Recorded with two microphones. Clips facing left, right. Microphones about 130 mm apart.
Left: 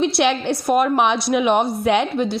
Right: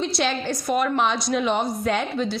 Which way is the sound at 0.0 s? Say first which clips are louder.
Left 6 dB; 65° left (ahead or behind).